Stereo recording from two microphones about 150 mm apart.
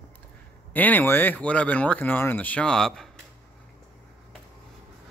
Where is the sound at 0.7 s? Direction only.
10° left (ahead or behind).